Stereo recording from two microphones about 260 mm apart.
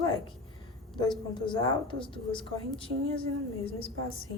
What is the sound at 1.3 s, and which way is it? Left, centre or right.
Speech, centre.